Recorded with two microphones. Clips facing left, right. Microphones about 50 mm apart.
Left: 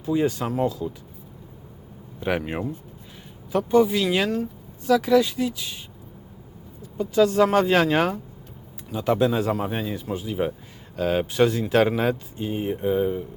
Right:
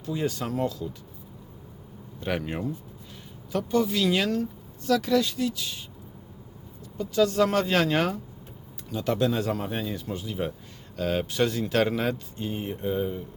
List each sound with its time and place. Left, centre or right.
0.0 s speech: centre
2.2 s speech: centre
6.9 s speech: centre